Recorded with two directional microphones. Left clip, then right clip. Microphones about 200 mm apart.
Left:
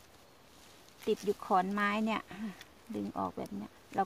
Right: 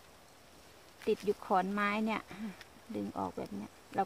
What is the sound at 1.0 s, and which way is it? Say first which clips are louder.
Speech: even; 25° left (ahead or behind).